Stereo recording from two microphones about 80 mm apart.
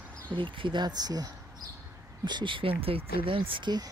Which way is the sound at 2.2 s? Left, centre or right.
Right.